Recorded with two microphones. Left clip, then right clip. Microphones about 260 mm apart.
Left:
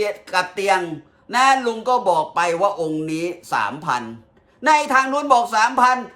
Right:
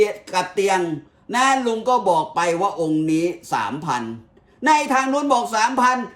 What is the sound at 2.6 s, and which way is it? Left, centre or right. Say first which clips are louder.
Speech: left 1 dB; left.